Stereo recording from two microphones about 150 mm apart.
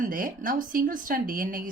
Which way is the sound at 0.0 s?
65° right (ahead or behind).